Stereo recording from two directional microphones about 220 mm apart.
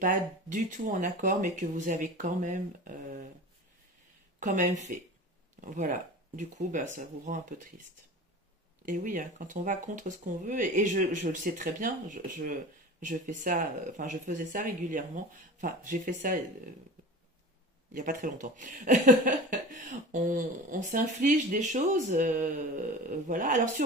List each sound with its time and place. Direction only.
0.0 s speech: 35° right (ahead or behind)
4.4 s speech: 35° right (ahead or behind)
8.8 s speech: 35° right (ahead or behind)
17.9 s speech: 35° right (ahead or behind)